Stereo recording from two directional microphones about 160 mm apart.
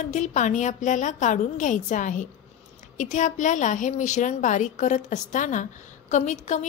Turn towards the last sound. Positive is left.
turn(degrees=50)  # may be behind; listen again after turning